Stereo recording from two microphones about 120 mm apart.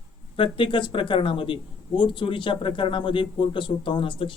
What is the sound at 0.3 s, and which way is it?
Speech, 45° left (ahead or behind).